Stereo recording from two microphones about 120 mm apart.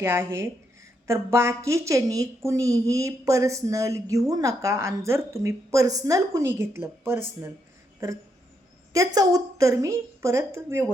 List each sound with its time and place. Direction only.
0.0 s a woman's voice: 20° right (ahead or behind)
8.9 s a woman's voice: 30° right (ahead or behind)